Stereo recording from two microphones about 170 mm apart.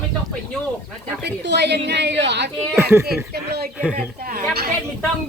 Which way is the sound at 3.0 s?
70° right (ahead or behind).